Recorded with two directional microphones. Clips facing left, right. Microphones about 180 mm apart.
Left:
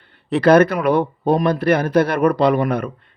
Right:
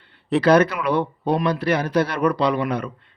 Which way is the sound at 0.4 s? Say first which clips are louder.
Left 5 dB; 55° left (ahead or behind).